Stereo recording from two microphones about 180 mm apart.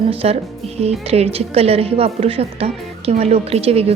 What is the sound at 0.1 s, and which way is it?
A woman's voice, 35° right (ahead or behind).